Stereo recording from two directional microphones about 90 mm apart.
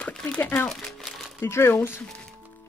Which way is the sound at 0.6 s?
5° left (ahead or behind).